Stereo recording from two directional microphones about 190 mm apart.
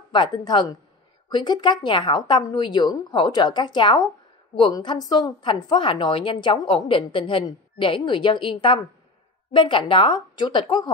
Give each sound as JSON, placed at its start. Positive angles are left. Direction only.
{"t": 0.1, "sound": "a woman's voice", "side_deg": 25}